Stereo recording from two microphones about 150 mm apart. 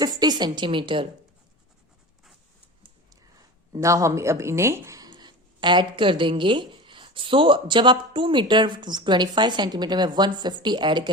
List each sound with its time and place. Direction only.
0.0 s a woman's voice: 25° right (ahead or behind)
3.7 s speech: 20° right (ahead or behind)